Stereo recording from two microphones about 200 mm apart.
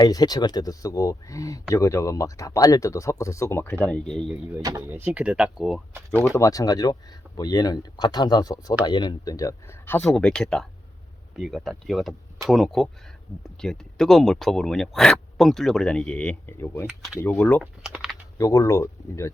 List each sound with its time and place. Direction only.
0.0 s speech: 20° left (ahead or behind); by 6.3 s centre (ahead or behind)
6.3 s speech: 15° left (ahead or behind)
16.8 s speech: centre (ahead or behind)
17.2 s speech: 10° left (ahead or behind)
17.6 s speech: 5° right (ahead or behind)
18.3 s speech: 15° left (ahead or behind)